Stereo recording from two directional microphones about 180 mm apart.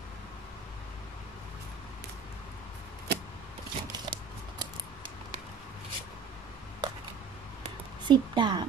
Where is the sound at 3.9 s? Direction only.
25° right (ahead or behind).